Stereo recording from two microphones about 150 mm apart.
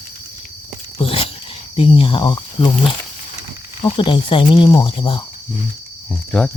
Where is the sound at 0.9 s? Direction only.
40° left (ahead or behind).